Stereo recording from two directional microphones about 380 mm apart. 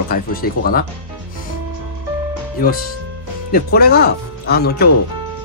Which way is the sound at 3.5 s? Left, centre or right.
Left.